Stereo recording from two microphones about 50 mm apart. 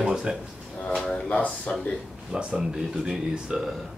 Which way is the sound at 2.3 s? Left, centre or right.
Centre.